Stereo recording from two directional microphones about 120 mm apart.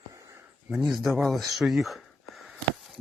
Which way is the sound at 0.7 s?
5° right (ahead or behind).